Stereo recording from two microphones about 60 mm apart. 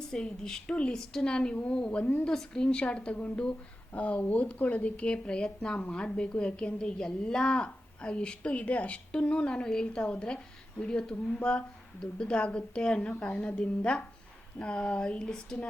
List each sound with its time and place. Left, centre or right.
0.1 s a woman's voice: centre